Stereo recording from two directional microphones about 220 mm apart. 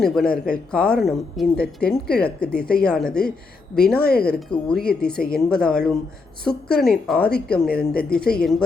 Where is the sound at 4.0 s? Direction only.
45° left (ahead or behind).